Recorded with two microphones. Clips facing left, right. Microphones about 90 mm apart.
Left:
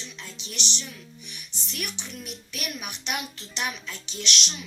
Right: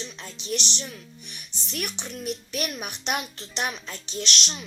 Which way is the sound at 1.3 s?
45° right (ahead or behind).